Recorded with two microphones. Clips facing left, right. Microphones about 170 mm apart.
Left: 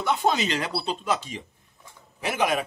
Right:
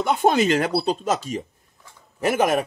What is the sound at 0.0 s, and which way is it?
Speech, 50° right (ahead or behind).